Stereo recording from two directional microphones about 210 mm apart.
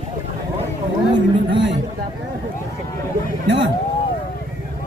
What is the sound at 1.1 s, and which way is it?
Speech, 55° right (ahead or behind).